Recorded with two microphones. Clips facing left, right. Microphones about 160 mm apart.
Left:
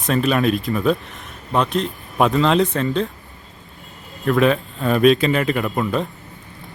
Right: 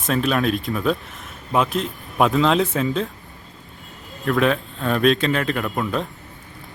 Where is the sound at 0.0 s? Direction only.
Centre (ahead or behind).